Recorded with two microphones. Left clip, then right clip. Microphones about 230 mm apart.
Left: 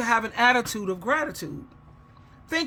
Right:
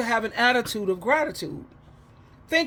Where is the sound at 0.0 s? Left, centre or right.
Centre.